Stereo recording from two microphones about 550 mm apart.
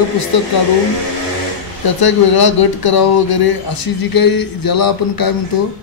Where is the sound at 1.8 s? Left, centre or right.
Left.